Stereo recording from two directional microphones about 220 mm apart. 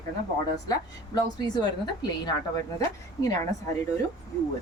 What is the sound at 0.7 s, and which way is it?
A woman's voice, 15° left (ahead or behind).